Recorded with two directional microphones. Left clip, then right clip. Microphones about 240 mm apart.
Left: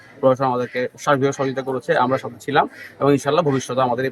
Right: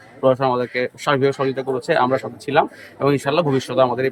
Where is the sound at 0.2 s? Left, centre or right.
Centre.